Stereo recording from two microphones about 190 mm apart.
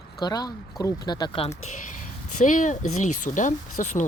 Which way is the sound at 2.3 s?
40° left (ahead or behind).